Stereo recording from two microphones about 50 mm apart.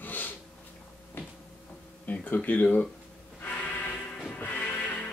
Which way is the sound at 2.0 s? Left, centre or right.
Left.